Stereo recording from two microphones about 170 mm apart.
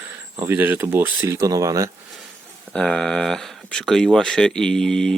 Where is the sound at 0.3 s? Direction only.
10° right (ahead or behind).